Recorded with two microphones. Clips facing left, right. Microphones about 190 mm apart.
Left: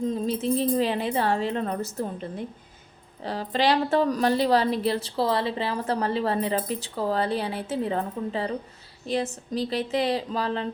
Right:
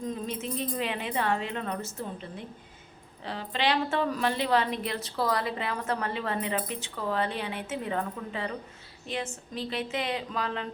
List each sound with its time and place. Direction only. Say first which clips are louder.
0.0 s a woman's voice: left 7 dB; 30° left (ahead or behind)
3.2 s a woman's voice: left 5 dB; 40° left (ahead or behind)